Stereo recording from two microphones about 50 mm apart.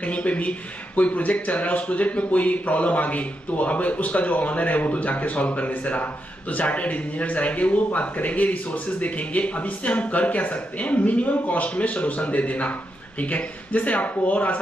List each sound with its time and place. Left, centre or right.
0.0 s speech: left